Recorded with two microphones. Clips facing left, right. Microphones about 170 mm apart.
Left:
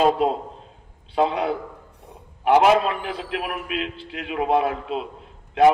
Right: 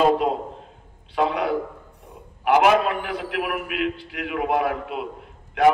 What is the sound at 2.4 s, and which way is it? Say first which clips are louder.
A man's voice: left 1 dB; 30° left (ahead or behind).